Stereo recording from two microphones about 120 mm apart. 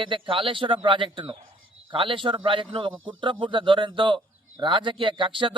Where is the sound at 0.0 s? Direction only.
45° right (ahead or behind).